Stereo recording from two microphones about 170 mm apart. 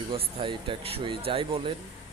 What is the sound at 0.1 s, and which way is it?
Speech, 30° right (ahead or behind).